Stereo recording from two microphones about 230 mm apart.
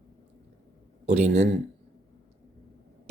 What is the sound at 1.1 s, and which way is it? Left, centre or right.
Speech, right.